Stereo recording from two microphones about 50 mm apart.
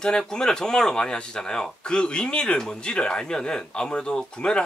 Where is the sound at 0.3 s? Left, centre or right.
Centre.